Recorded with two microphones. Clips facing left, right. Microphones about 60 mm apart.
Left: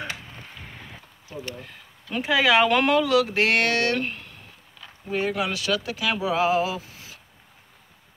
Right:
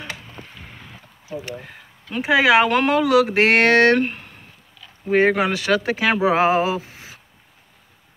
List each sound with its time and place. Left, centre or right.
2.2 s speech: centre; by 4.0 s right
4.0 s speech: right
5.1 s speech: right
6.2 s a sound: right